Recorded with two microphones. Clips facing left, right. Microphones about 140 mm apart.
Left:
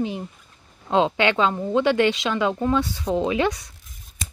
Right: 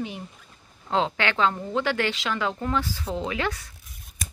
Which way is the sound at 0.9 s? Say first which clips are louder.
Left 5 dB; 20° left (ahead or behind).